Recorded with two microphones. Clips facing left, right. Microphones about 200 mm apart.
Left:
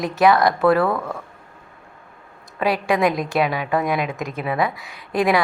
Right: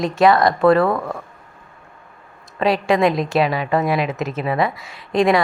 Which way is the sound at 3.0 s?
25° right (ahead or behind).